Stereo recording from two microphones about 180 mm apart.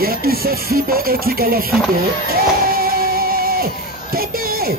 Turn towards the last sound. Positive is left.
turn(degrees=-55)  # may be behind; listen again after turning